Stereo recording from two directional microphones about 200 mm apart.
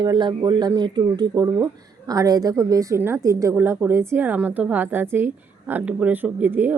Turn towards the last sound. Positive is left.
turn(degrees=-10)  # may be behind; listen again after turning